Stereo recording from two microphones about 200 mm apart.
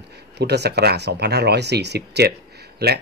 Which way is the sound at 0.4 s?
55° right (ahead or behind).